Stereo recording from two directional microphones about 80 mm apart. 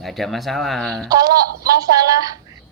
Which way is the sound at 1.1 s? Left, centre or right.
Right.